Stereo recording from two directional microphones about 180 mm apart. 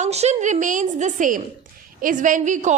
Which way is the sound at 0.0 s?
40° right (ahead or behind).